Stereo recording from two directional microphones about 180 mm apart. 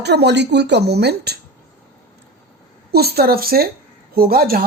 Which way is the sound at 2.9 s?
60° right (ahead or behind).